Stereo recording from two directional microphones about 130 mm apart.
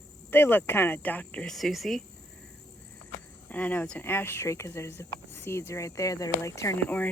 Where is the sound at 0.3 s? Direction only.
15° left (ahead or behind); by 2.0 s centre (ahead or behind).